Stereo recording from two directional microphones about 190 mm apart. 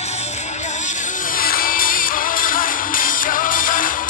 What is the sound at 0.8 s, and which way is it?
Music, 45° left (ahead or behind).